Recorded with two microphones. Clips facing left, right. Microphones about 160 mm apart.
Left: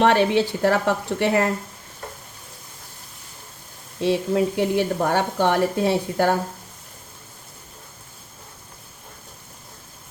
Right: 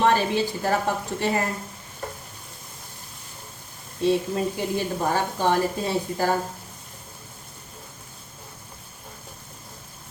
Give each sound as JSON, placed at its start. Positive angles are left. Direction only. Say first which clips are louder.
{"t": 0.0, "sound": "speech", "louder": "left 4 dB", "side_deg": 70}
{"t": 4.0, "sound": "speech", "louder": "left 2 dB", "side_deg": 70}